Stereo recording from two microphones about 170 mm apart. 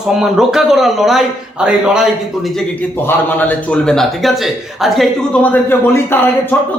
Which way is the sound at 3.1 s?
10° left (ahead or behind).